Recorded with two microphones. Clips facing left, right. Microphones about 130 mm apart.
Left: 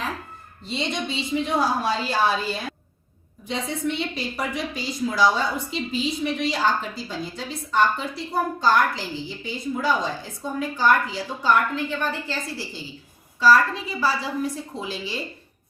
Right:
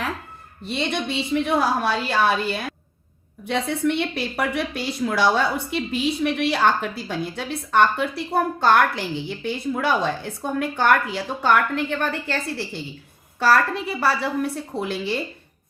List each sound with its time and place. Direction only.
0.6 s a woman's voice: 60° right (ahead or behind)